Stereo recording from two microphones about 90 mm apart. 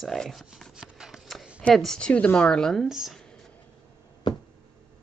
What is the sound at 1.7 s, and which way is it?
Speech, 5° left (ahead or behind).